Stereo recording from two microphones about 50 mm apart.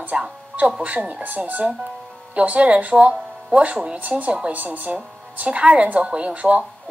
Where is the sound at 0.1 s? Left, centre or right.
Right.